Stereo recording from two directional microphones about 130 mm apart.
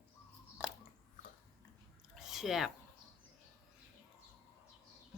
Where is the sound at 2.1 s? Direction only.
Centre (ahead or behind).